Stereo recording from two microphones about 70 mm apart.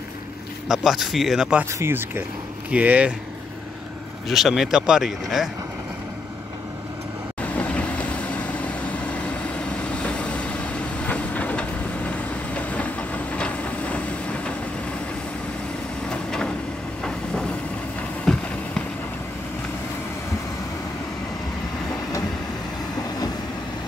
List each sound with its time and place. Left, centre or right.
0.7 s speech: centre
1.7 s speech: right
2.7 s speech: centre
4.3 s speech: centre
7.4 s vehicle: left
16.1 s vehicle: centre
17.0 s train: centre
18.2 s a sound: centre